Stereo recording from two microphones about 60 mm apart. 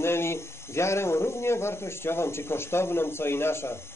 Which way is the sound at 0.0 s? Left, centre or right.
Left.